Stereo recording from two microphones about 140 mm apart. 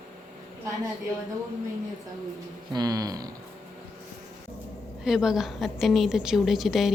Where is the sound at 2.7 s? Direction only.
25° right (ahead or behind).